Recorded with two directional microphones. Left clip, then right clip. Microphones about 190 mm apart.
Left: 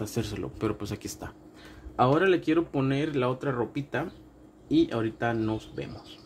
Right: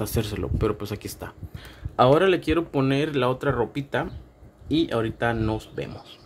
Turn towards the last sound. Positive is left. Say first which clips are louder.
# right 4 dB
turn(degrees=-10)  # may be behind; listen again after turning